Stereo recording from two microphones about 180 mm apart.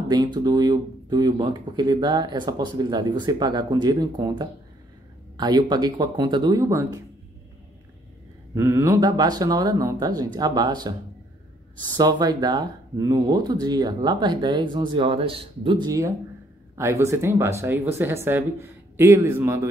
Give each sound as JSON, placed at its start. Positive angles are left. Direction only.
{"t": 0.1, "sound": "speech", "side_deg": -20}
{"t": 8.5, "sound": "speech", "side_deg": -15}